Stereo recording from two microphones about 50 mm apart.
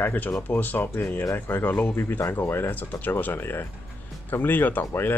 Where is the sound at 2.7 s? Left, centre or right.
Left.